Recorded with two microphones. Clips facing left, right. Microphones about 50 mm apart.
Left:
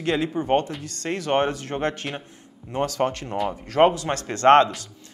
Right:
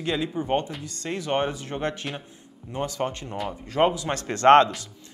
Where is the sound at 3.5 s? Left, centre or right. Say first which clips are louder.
Left 4 dB; left.